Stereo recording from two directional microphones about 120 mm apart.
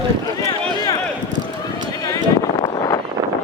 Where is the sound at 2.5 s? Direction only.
40° left (ahead or behind).